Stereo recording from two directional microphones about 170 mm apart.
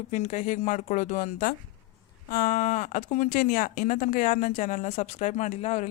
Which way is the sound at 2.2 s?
60° left (ahead or behind).